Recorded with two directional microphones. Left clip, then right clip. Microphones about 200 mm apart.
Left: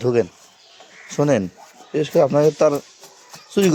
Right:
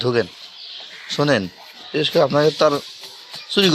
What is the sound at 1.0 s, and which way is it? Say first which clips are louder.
Speech: even; 25° left (ahead or behind).